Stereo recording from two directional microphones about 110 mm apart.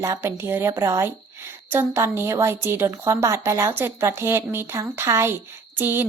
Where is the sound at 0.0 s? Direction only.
25° right (ahead or behind).